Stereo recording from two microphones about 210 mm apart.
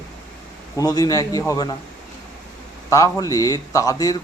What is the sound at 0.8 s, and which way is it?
Speech, 15° left (ahead or behind).